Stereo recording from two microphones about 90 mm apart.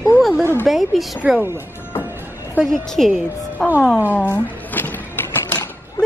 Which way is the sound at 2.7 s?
5° left (ahead or behind).